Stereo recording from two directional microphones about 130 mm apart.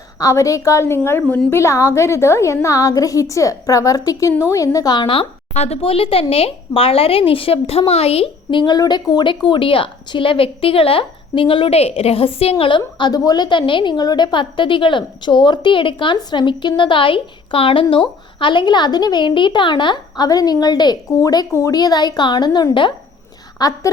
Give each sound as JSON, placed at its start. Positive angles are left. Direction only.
{"t": 0.2, "sound": "a woman's voice", "side_deg": 25}
{"t": 23.6, "sound": "a woman's voice", "side_deg": 30}